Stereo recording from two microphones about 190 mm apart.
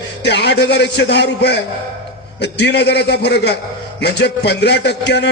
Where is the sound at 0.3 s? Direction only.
60° left (ahead or behind).